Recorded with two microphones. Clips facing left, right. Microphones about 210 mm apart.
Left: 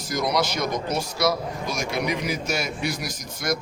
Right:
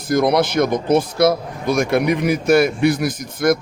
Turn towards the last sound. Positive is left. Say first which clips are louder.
# right 10 dB
turn(degrees=-55)  # may be behind; listen again after turning